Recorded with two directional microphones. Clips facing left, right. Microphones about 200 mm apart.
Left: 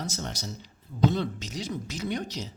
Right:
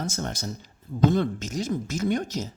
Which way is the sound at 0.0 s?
50° right (ahead or behind).